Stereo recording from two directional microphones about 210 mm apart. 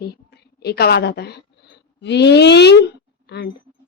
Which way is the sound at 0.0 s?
50° left (ahead or behind).